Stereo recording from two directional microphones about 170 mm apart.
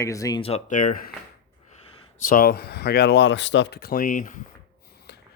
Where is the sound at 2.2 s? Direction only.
55° left (ahead or behind).